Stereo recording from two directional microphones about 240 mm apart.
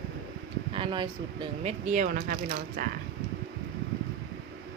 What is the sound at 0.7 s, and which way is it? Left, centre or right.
Speech, right.